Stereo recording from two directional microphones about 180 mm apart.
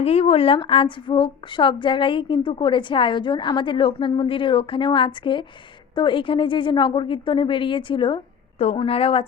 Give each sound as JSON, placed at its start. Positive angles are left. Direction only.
{"t": 0.0, "sound": "a woman's voice", "side_deg": 35}